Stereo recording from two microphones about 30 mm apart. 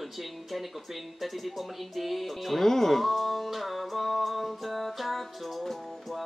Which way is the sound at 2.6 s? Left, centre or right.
Centre.